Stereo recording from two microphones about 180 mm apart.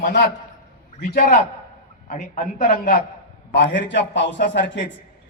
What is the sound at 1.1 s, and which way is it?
Speech, 60° left (ahead or behind).